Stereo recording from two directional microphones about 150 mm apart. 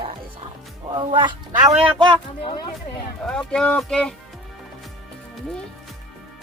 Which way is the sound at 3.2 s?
5° left (ahead or behind).